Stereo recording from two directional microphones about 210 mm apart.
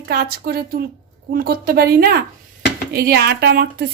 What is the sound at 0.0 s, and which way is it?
Speech, 50° right (ahead or behind).